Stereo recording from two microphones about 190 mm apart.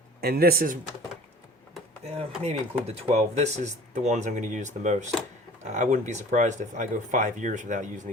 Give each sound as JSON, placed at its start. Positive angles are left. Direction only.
{"t": 0.2, "sound": "speech", "side_deg": -55}
{"t": 2.4, "sound": "speech", "side_deg": -35}